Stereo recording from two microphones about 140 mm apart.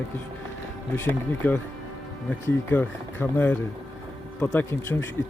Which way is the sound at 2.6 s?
15° left (ahead or behind).